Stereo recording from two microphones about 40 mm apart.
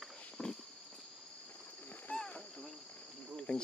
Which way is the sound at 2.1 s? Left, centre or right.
Left.